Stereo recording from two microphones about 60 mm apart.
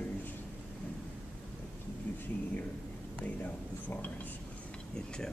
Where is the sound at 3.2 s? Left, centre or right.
Left.